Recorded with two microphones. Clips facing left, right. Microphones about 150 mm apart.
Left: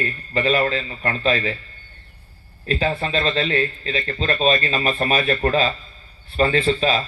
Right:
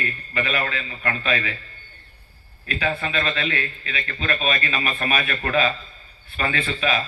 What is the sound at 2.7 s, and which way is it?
A man's voice, 35° left (ahead or behind).